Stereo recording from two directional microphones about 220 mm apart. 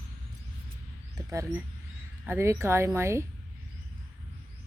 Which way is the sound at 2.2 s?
10° right (ahead or behind).